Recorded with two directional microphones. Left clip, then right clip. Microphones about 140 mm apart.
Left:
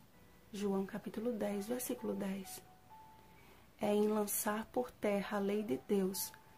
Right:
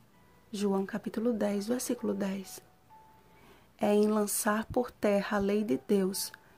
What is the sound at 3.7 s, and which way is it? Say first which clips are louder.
Speech: right 7 dB; 45° right (ahead or behind).